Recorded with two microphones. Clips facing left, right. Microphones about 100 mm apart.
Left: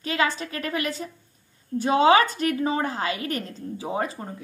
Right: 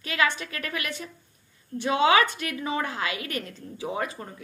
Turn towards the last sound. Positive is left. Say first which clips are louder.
# left 3 dB
turn(degrees=30)  # may be behind; listen again after turning